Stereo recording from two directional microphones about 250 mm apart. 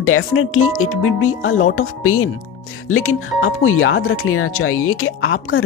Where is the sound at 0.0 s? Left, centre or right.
Left.